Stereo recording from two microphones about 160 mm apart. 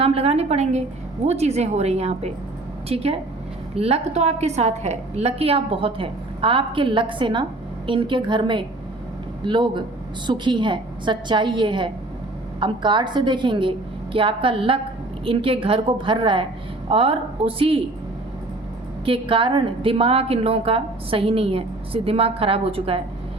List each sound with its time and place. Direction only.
0.0 s a woman's voice: 40° right (ahead or behind)
19.0 s a woman's voice: 35° right (ahead or behind)